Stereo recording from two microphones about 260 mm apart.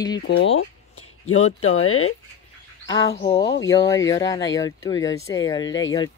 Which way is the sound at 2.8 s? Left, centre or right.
Centre.